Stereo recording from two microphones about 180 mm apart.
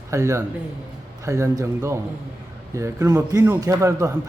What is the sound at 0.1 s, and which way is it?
Speech, 15° right (ahead or behind).